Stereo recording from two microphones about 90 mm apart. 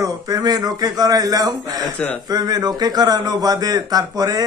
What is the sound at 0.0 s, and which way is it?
Speech, 45° right (ahead or behind).